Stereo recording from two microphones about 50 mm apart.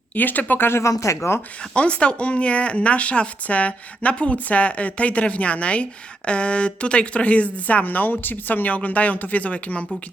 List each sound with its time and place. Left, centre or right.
0.2 s speech: left
0.7 s speech: left
1.7 s speech: left